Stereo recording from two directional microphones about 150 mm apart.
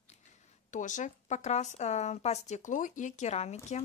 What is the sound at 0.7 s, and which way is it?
Speech, 55° left (ahead or behind).